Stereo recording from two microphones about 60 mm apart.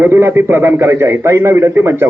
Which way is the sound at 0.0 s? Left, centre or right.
Right.